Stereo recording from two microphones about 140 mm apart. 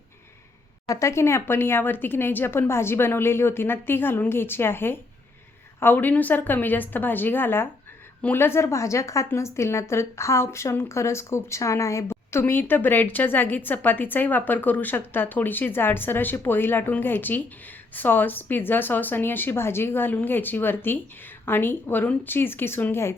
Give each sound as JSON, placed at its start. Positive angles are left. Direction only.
{"t": 0.9, "sound": "a woman's voice", "side_deg": 20}